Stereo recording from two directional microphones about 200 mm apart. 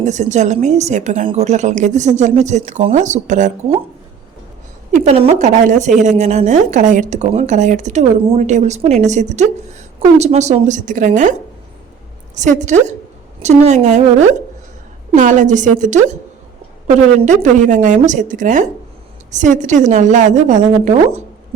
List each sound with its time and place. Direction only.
0.0 s a woman's voice: 35° right (ahead or behind)
4.9 s a woman's voice: 35° right (ahead or behind)
15.1 s a woman's voice: 40° right (ahead or behind)